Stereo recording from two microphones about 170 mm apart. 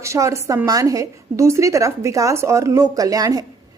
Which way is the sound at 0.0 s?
15° right (ahead or behind).